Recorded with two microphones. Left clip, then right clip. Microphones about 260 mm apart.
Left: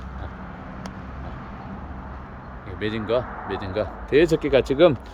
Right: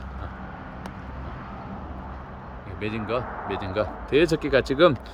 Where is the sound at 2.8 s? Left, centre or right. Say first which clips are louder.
Left 4 dB; centre.